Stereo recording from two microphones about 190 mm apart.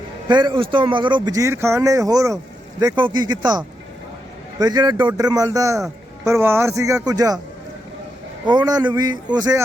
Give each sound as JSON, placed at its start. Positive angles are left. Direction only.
{"t": 0.3, "sound": "speech", "side_deg": -25}
{"t": 4.6, "sound": "speech", "side_deg": -20}
{"t": 8.4, "sound": "speech", "side_deg": -20}